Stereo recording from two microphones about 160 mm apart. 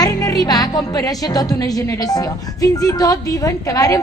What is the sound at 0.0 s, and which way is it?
Speech, 25° left (ahead or behind).